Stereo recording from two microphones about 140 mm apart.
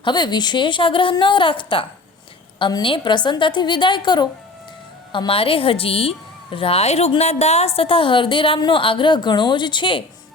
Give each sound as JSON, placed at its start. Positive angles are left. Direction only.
{"t": 0.0, "sound": "a woman's voice", "side_deg": 30}